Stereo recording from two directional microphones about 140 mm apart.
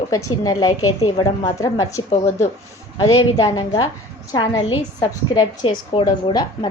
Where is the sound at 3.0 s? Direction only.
25° left (ahead or behind).